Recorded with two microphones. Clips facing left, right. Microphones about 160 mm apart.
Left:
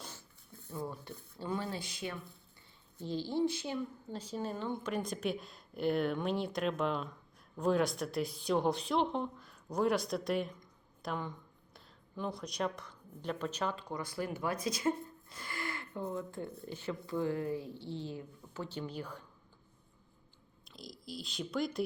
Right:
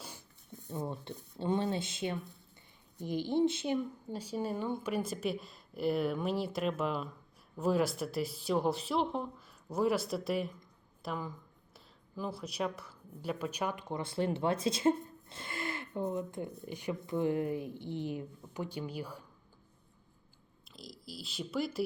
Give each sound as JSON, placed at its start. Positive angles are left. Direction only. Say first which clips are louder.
{"t": 0.0, "sound": "a woman's voice", "louder": "even", "side_deg": -15}
{"t": 4.1, "sound": "speech", "louder": "right 4 dB", "side_deg": -10}
{"t": 20.7, "sound": "speech", "louder": "left 2 dB", "side_deg": 0}